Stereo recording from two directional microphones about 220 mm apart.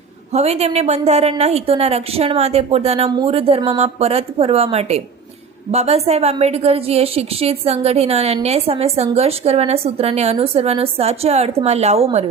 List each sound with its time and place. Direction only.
0.3 s a woman's voice: 30° right (ahead or behind)